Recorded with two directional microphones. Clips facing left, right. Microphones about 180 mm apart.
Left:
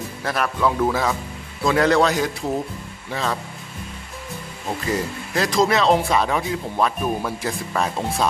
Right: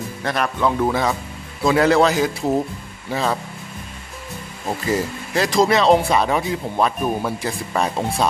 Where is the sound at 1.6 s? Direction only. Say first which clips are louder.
Right 2 dB; 5° right (ahead or behind).